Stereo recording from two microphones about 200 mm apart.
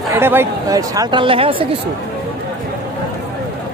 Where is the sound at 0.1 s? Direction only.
10° right (ahead or behind).